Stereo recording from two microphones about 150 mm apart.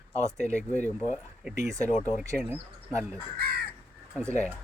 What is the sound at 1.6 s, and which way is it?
Speech, 20° right (ahead or behind).